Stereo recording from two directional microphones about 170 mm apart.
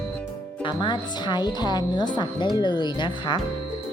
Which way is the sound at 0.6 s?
25° left (ahead or behind).